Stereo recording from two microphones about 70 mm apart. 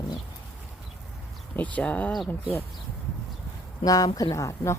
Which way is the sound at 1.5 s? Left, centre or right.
Left.